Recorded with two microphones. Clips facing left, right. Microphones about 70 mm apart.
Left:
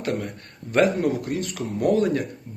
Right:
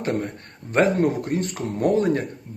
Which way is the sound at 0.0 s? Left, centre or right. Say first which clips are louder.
Right 2 dB; right.